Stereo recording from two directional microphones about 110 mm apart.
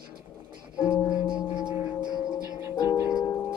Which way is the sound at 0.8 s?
30° left (ahead or behind).